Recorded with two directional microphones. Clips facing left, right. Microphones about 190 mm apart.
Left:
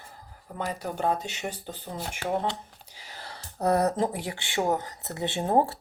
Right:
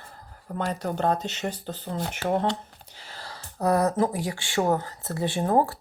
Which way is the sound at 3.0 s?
20° left (ahead or behind).